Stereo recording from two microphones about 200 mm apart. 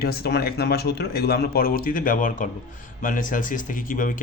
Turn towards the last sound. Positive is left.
turn(degrees=40)  # may be behind; listen again after turning